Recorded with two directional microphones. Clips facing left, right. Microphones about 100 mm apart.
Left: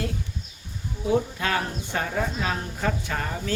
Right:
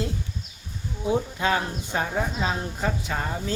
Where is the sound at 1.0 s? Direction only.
20° right (ahead or behind).